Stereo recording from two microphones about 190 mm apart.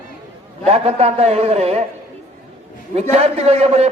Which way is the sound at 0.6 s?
35° right (ahead or behind).